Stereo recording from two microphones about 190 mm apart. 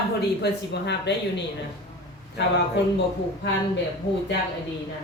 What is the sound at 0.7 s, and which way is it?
Speech, 65° left (ahead or behind).